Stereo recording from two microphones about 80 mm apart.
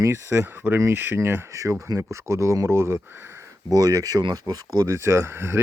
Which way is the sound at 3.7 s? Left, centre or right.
Right.